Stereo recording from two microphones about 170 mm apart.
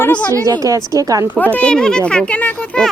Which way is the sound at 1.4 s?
10° left (ahead or behind).